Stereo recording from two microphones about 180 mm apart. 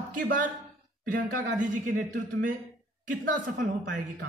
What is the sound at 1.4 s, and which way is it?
Speech, 45° right (ahead or behind).